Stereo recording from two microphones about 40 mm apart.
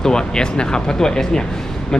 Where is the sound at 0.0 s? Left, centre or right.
Centre.